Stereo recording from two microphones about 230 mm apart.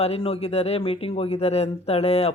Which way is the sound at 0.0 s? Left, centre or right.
Left.